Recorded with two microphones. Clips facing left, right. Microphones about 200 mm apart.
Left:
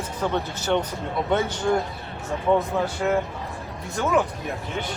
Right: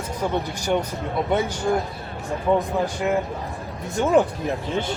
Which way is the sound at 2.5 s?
10° right (ahead or behind).